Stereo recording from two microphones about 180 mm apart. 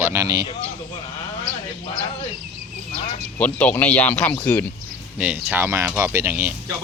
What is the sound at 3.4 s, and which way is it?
Speech, 10° left (ahead or behind).